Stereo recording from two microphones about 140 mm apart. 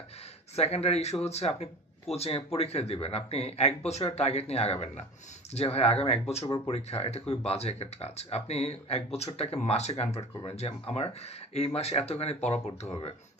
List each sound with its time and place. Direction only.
0.5 s speech: 50° left (ahead or behind)